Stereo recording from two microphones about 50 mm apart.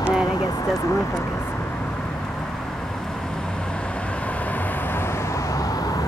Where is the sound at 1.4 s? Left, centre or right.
Left.